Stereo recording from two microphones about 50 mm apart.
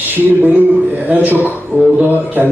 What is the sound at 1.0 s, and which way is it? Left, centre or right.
Speech, right.